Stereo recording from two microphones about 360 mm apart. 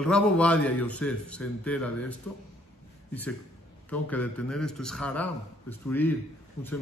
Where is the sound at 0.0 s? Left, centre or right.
Centre.